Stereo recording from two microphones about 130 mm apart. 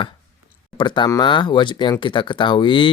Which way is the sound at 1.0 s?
35° left (ahead or behind).